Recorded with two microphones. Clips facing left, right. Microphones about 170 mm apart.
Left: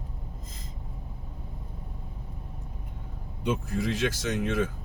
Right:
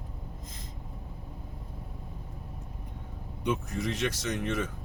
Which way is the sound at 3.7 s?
5° left (ahead or behind).